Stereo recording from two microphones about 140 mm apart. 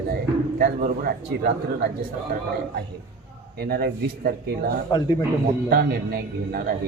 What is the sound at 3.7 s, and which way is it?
Speech, 90° right.